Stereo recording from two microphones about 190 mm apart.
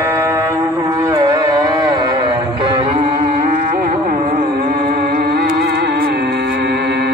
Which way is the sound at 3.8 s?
45° right (ahead or behind).